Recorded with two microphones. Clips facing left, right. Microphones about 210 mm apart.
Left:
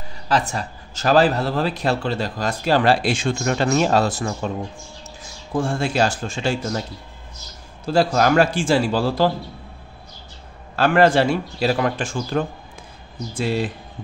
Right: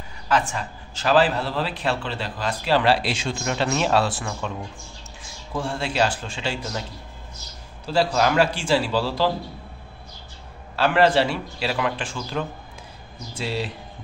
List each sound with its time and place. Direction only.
0.3 s speech: 35° left (ahead or behind)
5.6 s speech: 45° left (ahead or behind)
7.8 s speech: 50° left (ahead or behind)
10.8 s speech: 50° left (ahead or behind)